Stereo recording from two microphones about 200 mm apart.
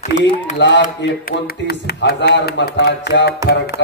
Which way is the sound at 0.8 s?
50° left (ahead or behind).